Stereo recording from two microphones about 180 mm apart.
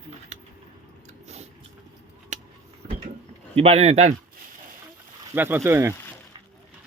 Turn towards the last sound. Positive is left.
turn(degrees=-15)  # may be behind; listen again after turning